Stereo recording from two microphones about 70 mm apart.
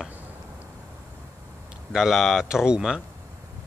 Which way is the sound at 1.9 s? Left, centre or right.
Centre.